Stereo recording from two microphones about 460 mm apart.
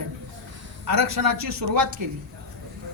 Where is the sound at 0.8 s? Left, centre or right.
Right.